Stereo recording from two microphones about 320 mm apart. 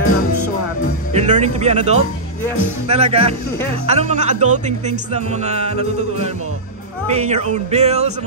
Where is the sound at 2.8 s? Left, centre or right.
Centre.